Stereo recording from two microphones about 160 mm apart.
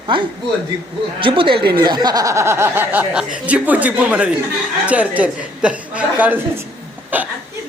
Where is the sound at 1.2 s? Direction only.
30° right (ahead or behind).